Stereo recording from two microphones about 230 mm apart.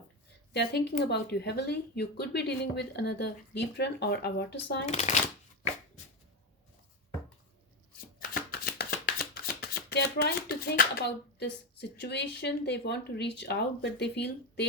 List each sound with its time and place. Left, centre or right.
0.5 s speech: left
4.9 s speech: left
8.3 s chopping: left